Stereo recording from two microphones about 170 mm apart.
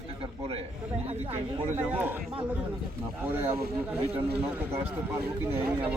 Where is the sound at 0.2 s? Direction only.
35° right (ahead or behind).